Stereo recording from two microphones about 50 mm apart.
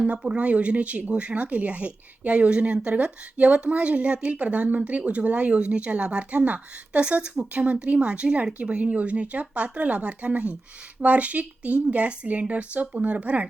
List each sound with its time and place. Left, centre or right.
0.0 s a woman's voice: right